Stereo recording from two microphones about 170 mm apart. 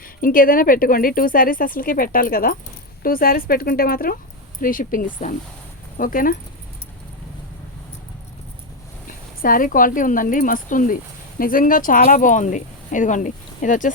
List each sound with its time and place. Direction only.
0.0 s speech: 55° left (ahead or behind)
9.4 s speech: 55° left (ahead or behind)